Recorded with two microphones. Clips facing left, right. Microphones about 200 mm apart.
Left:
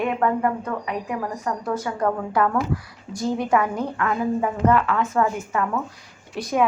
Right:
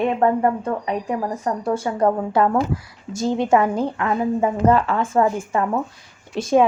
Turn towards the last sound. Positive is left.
turn(degrees=-25)  # may be behind; listen again after turning